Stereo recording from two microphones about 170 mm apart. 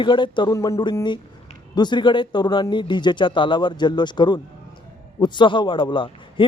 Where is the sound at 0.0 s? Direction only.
30° left (ahead or behind).